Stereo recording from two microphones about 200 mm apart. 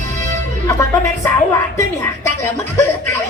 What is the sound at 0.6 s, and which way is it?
Speech, 15° left (ahead or behind).